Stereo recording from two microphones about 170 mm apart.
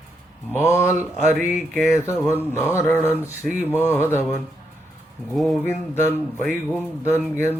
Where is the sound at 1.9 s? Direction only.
15° left (ahead or behind).